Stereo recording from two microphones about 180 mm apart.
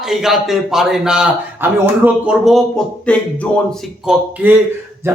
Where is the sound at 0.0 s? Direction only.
Centre (ahead or behind).